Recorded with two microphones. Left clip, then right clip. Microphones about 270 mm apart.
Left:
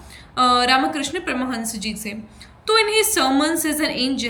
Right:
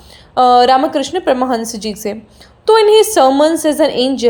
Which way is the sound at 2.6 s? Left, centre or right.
Centre.